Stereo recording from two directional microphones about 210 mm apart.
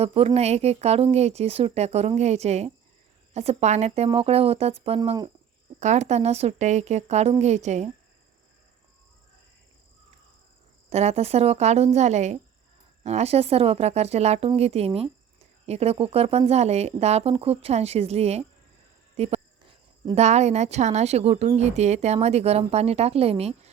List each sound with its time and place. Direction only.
0.0 s speech: 25° right (ahead or behind)
10.8 s speech: 30° right (ahead or behind)